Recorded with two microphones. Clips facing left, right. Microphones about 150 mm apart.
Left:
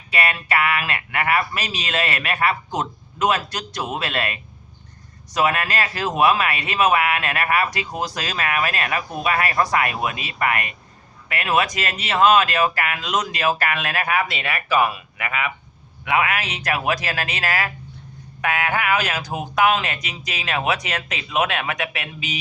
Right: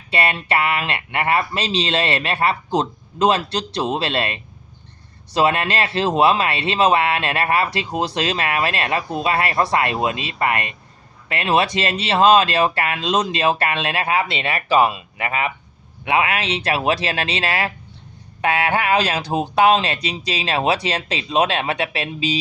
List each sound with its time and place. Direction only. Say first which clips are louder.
0.1 s speech: right 2 dB; 30° right (ahead or behind)